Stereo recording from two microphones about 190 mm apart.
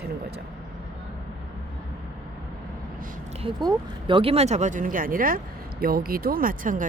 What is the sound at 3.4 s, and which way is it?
Speech, 25° right (ahead or behind).